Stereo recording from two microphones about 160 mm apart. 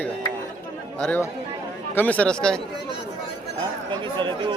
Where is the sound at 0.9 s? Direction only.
10° left (ahead or behind).